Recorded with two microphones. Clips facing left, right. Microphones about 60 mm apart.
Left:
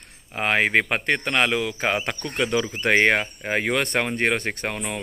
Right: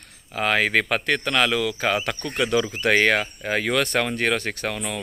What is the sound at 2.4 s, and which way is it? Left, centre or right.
Speech, centre.